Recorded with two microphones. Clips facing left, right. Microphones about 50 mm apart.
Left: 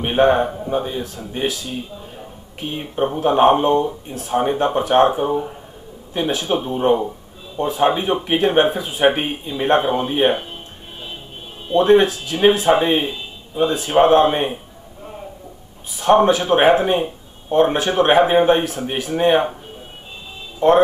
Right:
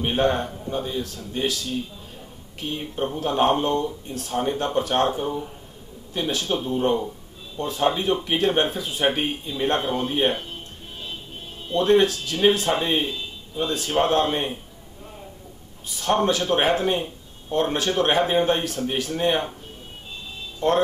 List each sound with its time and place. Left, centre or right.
0.0 s a man's voice: left
11.6 s a man's voice: centre
15.9 s a man's voice: centre
20.5 s speech: left